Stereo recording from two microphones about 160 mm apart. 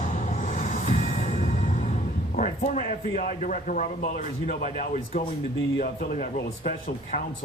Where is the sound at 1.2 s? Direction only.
60° left (ahead or behind).